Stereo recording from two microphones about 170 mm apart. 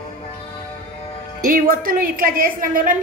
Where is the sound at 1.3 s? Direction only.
55° right (ahead or behind).